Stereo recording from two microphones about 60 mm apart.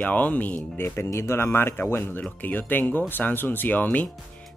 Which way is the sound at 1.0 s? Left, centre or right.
Left.